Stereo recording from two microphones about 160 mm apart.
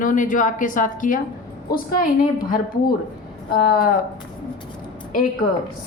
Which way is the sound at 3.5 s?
70° left (ahead or behind).